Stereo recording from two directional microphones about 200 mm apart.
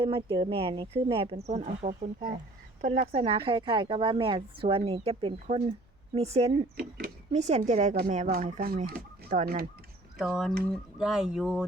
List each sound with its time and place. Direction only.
0.0 s a woman's voice: 25° right (ahead or behind)
6.7 s speech: 50° right (ahead or behind)
7.3 s speech: 35° right (ahead or behind)
10.2 s speech: centre (ahead or behind)